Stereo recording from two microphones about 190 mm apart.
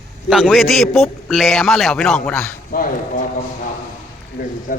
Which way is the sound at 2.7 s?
45° left (ahead or behind).